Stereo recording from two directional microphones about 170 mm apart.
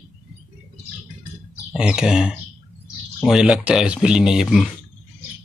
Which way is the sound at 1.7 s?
5° right (ahead or behind).